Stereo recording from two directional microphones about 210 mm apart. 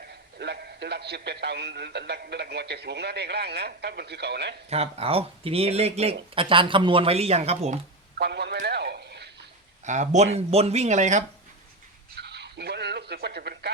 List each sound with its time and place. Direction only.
0.3 s a man's voice: 50° right (ahead or behind)
4.7 s speech: 30° right (ahead or behind)
8.2 s a man's voice: 50° right (ahead or behind)
9.8 s speech: 35° right (ahead or behind)
12.2 s a sound: 50° right (ahead or behind)